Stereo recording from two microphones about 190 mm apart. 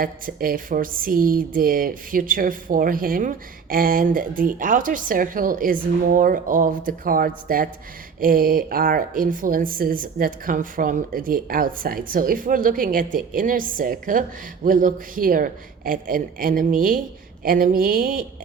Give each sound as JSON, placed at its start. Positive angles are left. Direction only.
{"t": 0.0, "sound": "speech", "side_deg": -50}